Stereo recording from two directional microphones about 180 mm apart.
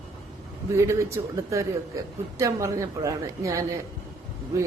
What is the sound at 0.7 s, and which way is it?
A man's voice, 15° right (ahead or behind).